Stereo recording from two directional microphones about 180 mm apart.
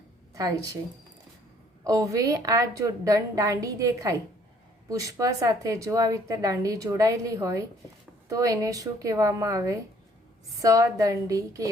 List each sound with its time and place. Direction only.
0.3 s speech: 20° right (ahead or behind)
1.8 s speech: 20° right (ahead or behind)